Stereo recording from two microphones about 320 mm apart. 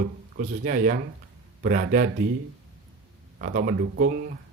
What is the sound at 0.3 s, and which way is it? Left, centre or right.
Speech, right.